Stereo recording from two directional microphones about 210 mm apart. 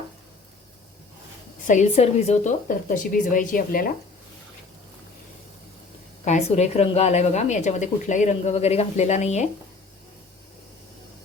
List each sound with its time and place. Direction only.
1.6 s a woman's voice: 35° left (ahead or behind)
6.2 s a woman's voice: 30° left (ahead or behind)